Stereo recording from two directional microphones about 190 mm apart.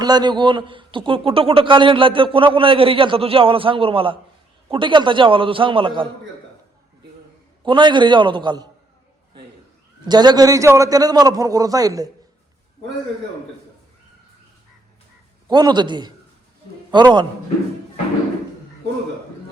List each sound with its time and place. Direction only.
0.0 s a man's voice: 20° right (ahead or behind)
7.6 s a man's voice: 25° right (ahead or behind)
10.1 s a man's voice: 20° right (ahead or behind)
15.4 s a man's voice: 20° right (ahead or behind)